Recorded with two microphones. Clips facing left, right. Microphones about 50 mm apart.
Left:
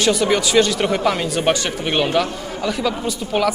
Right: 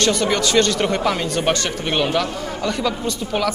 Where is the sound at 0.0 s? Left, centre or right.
Centre.